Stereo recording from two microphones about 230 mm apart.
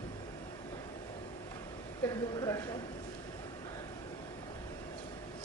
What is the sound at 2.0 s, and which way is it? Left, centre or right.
Speech, centre.